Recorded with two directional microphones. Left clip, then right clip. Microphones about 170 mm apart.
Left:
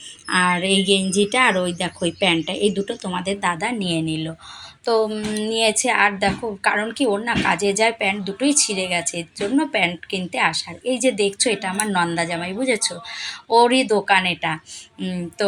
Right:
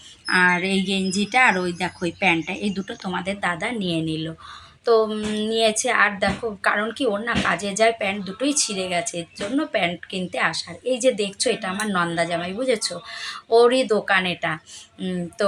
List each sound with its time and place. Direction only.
0.3 s a woman's voice: 5° left (ahead or behind)
0.9 s speech: 30° right (ahead or behind)
1.3 s a woman's voice: 5° left (ahead or behind)